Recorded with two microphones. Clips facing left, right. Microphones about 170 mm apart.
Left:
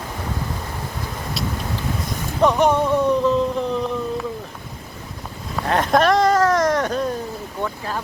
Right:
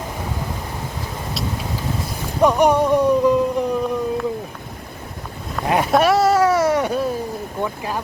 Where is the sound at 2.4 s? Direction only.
10° right (ahead or behind).